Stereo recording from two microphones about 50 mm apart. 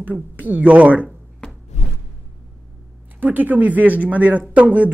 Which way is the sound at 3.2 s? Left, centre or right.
Right.